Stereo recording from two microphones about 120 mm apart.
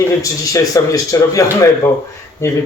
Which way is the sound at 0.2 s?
30° left (ahead or behind).